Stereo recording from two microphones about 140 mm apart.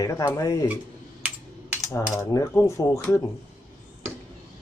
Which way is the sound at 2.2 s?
20° left (ahead or behind).